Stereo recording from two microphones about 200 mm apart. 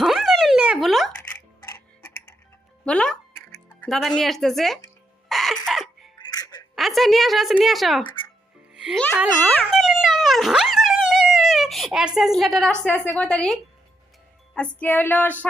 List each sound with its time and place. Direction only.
0.0 s music: centre (ahead or behind)
1.6 s tick-tock: 10° left (ahead or behind)
2.8 s music: 5° left (ahead or behind)
3.8 s speech: centre (ahead or behind)
5.3 s cough: centre (ahead or behind)
5.6 s music: centre (ahead or behind)
6.2 s music: 20° left (ahead or behind)
6.7 s speech: centre (ahead or behind)
8.7 s music: 5° right (ahead or behind)
9.1 s speech: 5° right (ahead or behind)
9.6 s dog: centre (ahead or behind)
12.4 s speech: centre (ahead or behind)
14.5 s music: 5° left (ahead or behind)